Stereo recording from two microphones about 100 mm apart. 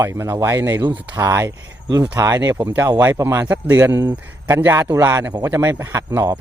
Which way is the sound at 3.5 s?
15° right (ahead or behind).